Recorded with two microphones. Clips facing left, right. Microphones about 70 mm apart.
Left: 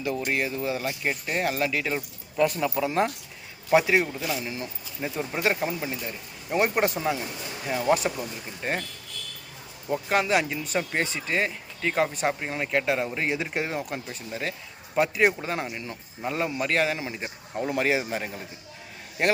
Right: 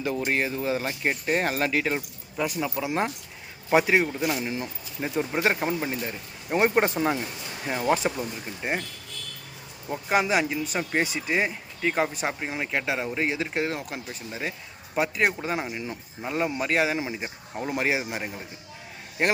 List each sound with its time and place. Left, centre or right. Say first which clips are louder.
0.3 s speech: right 1 dB; right
2.0 s a man's voice: left 5 dB; centre; by 8.1 s right
8.6 s a man's voice: even; centre
10.1 s a man's voice: right 1 dB; centre